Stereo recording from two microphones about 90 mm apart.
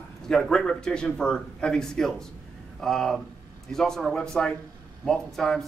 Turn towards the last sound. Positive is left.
turn(degrees=5)  # may be behind; listen again after turning